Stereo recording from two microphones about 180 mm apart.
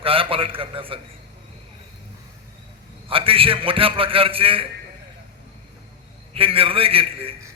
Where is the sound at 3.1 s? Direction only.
30° right (ahead or behind).